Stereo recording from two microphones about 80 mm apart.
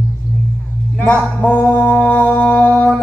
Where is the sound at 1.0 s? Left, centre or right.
Centre.